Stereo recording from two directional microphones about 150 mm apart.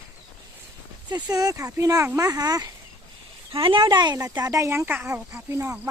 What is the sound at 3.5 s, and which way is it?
Speech, 35° right (ahead or behind).